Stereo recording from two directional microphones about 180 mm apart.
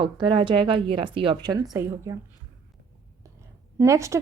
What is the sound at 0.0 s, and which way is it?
A woman's voice, 30° right (ahead or behind).